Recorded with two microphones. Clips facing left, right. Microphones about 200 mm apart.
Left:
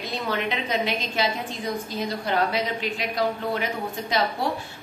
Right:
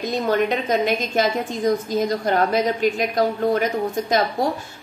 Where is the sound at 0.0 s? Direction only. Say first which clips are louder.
Right 7 dB; 45° right (ahead or behind).